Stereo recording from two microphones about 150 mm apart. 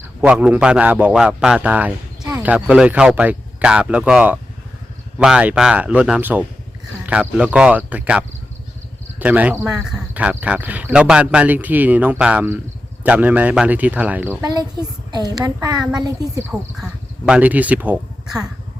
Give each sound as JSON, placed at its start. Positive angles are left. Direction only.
{"t": 0.2, "sound": "speech", "side_deg": -10}
{"t": 15.1, "sound": "a woman's voice", "side_deg": -25}
{"t": 16.5, "sound": "speech", "side_deg": -5}